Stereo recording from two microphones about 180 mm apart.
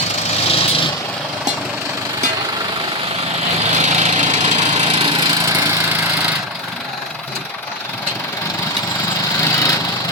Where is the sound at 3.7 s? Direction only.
40° right (ahead or behind); by 6.3 s 15° right (ahead or behind).